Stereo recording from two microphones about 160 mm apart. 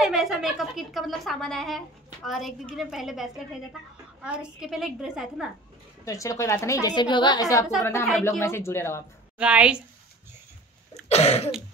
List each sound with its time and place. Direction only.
0.0 s speech: centre (ahead or behind)
6.0 s a woman's voice: 20° left (ahead or behind)
9.4 s a woman's voice: 5° right (ahead or behind)
11.1 s cough: 40° left (ahead or behind)